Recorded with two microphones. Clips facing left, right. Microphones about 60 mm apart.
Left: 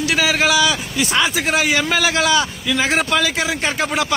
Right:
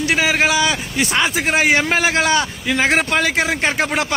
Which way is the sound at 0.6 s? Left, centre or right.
Right.